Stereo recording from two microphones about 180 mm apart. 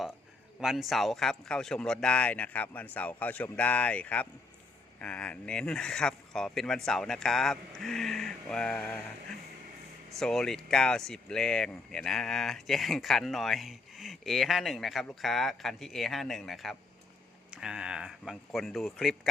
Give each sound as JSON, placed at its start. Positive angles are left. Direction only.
{"t": 0.6, "sound": "speech", "side_deg": 0}
{"t": 10.2, "sound": "speech", "side_deg": 0}